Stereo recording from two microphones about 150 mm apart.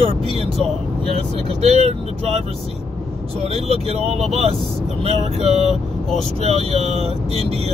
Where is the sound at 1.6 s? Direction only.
45° right (ahead or behind).